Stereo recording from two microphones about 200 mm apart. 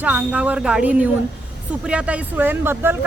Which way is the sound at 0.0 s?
5° right (ahead or behind).